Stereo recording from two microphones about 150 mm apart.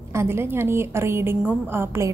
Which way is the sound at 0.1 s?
15° right (ahead or behind).